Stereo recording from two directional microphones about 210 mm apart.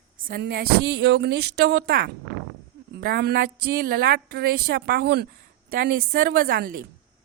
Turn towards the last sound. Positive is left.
turn(degrees=-45)  # may be behind; listen again after turning